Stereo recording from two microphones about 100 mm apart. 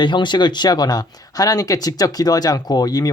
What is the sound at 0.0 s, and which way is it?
Speech, 50° left (ahead or behind).